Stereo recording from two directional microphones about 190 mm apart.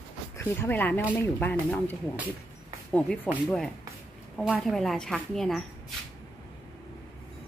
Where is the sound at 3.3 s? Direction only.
Centre (ahead or behind).